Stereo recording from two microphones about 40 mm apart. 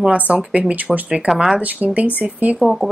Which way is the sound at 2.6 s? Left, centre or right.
Centre.